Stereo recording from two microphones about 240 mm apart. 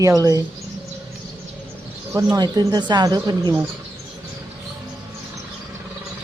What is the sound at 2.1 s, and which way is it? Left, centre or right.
A woman's voice, centre.